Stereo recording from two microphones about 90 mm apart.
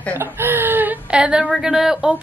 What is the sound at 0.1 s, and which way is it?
Speech, 30° right (ahead or behind).